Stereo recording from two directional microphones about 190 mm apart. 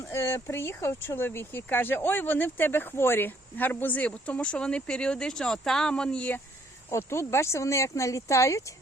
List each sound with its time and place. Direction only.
0.0 s speech: 15° left (ahead or behind)